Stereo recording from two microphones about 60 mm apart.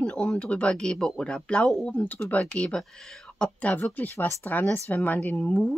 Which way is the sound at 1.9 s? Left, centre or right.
Left.